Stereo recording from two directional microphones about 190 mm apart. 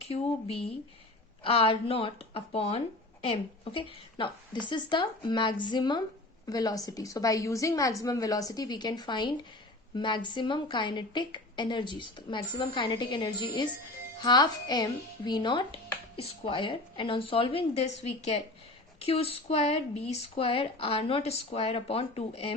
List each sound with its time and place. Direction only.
0.1 s speech: 30° left (ahead or behind)